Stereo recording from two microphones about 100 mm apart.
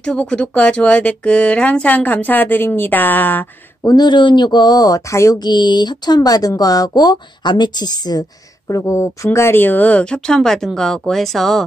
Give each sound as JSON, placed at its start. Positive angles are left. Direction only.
{"t": 0.0, "sound": "speech", "side_deg": 10}
{"t": 3.8, "sound": "speech", "side_deg": 45}
{"t": 5.4, "sound": "speech", "side_deg": 45}
{"t": 8.6, "sound": "speech", "side_deg": 30}